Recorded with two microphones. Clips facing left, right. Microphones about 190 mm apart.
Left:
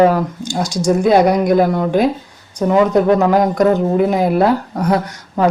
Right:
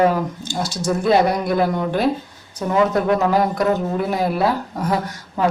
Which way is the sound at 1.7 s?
35° left (ahead or behind).